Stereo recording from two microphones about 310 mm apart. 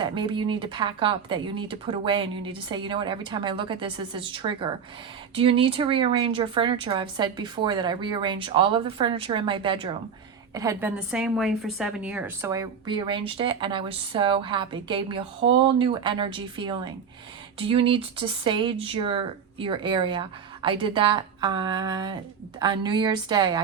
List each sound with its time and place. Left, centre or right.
0.0 s a woman's voice: centre